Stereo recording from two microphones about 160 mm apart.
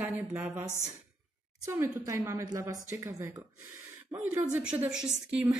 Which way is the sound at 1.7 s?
15° right (ahead or behind).